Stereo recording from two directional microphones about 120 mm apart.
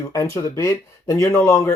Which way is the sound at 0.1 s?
25° left (ahead or behind).